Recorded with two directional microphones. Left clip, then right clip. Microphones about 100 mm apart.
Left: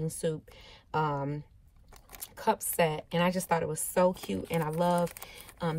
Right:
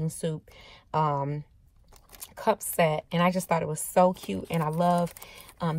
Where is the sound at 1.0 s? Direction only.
30° right (ahead or behind).